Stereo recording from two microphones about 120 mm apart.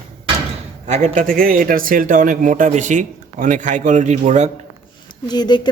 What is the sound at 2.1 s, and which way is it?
A man's voice, 90° right.